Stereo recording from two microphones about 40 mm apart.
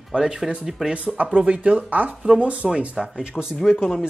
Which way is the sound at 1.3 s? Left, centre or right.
Right.